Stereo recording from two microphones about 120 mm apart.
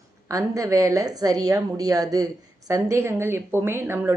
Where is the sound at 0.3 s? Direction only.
30° right (ahead or behind).